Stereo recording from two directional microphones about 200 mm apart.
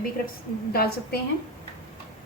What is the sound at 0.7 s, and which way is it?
Speech, 50° left (ahead or behind).